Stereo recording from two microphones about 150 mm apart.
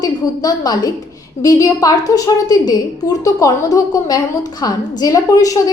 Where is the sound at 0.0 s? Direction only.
25° left (ahead or behind).